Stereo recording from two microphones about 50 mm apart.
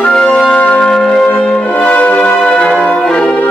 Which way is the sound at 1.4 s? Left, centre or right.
Left.